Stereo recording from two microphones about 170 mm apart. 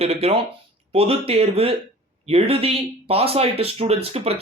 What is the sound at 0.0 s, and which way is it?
Speech, 35° right (ahead or behind).